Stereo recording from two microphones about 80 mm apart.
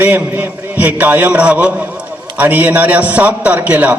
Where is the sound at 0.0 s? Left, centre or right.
Right.